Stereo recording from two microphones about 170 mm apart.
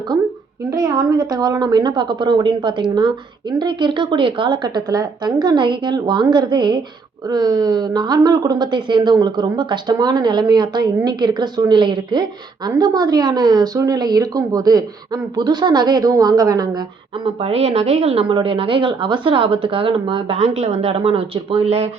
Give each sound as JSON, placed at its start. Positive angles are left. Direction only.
{"t": 0.7, "sound": "a woman's voice", "side_deg": -20}
{"t": 17.4, "sound": "a woman's voice", "side_deg": -35}